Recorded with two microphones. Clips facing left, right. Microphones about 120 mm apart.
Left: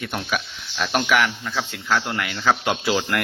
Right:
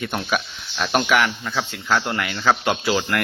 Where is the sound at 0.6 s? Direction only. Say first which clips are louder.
Even; 5° right (ahead or behind).